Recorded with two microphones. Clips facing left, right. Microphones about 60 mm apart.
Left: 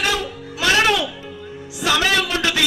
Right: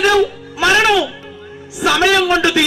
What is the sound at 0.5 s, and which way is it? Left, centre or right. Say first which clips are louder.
Music: right 5 dB; right.